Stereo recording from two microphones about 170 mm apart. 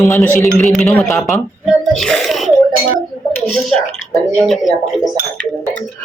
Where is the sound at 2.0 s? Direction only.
Centre (ahead or behind).